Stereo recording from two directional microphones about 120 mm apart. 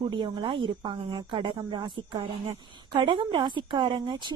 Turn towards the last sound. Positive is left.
turn(degrees=-40)  # may be behind; listen again after turning